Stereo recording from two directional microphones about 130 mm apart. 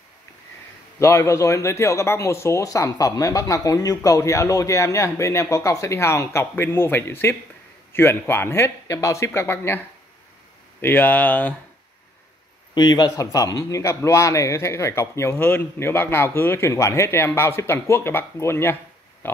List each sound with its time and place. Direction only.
0.9 s a man's voice: 20° left (ahead or behind)
10.8 s speech: 15° left (ahead or behind)
12.7 s a man's voice: 30° left (ahead or behind); by 19.4 s 15° left (ahead or behind)